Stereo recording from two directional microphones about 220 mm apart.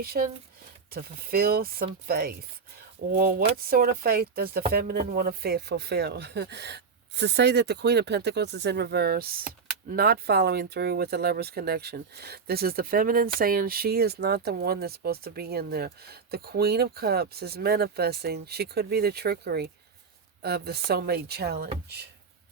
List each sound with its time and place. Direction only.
0.0 s speech: 45° right (ahead or behind)